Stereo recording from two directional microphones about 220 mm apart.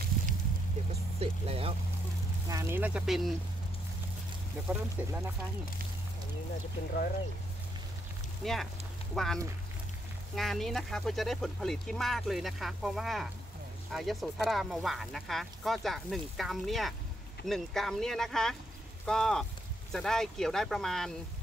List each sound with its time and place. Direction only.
1.2 s speech: 25° right (ahead or behind)
2.4 s speech: 15° right (ahead or behind)
4.6 s speech: 10° right (ahead or behind)
8.4 s speech: centre (ahead or behind)